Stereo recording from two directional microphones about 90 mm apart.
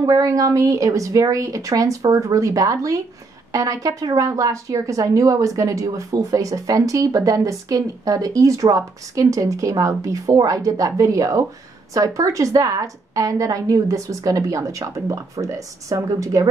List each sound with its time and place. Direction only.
0.0 s a woman's voice: 40° right (ahead or behind)